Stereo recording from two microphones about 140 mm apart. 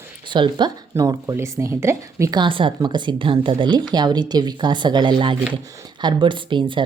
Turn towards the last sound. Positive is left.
turn(degrees=-35)  # may be behind; listen again after turning